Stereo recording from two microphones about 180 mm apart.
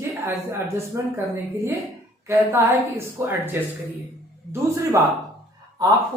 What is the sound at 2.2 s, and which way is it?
A woman's voice, 15° right (ahead or behind).